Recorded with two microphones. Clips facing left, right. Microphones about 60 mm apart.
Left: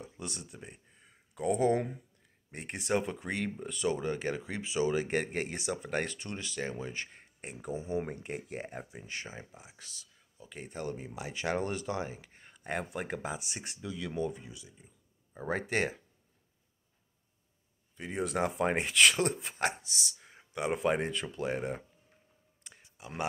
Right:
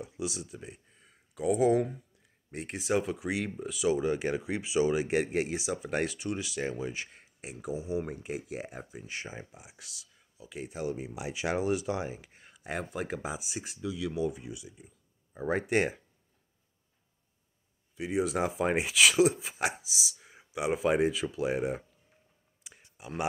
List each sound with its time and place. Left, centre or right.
0.0 s speech: centre
7.1 s speech: centre
9.0 s speech: centre
17.9 s speech: centre
22.6 s clicking: centre
22.9 s speech: centre